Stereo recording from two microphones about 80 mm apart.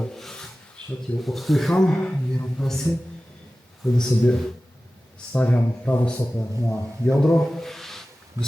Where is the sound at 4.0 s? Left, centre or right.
Centre.